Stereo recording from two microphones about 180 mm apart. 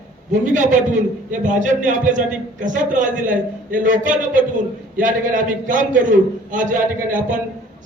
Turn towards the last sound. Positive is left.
turn(degrees=-45)  # may be behind; listen again after turning